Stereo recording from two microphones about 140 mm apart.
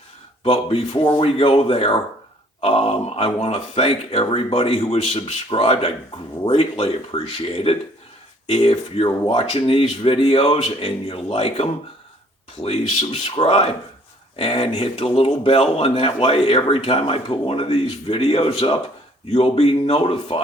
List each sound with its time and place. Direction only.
0.4 s speech: 45° left (ahead or behind)